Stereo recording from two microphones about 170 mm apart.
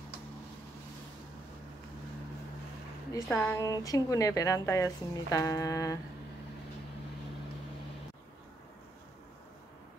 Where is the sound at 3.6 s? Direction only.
20° left (ahead or behind).